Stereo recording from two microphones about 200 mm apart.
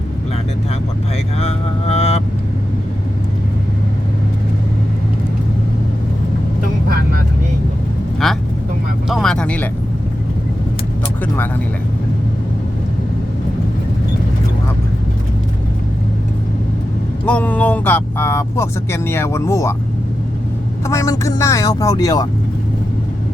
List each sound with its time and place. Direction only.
1.4 s mantra: 30° left (ahead or behind)
8.2 s vehicle: centre (ahead or behind)
9.0 s a sound: centre (ahead or behind)
17.2 s vehicle: 5° left (ahead or behind)
20.8 s speech: 15° left (ahead or behind)